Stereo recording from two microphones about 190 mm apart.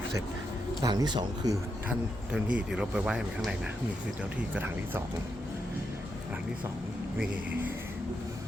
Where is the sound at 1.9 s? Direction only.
5° right (ahead or behind).